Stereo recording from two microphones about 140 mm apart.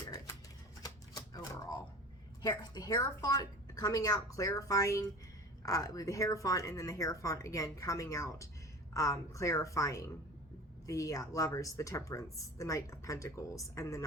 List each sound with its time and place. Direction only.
0.8 s typewriter: 25° left (ahead or behind)
2.4 s speech: 30° left (ahead or behind)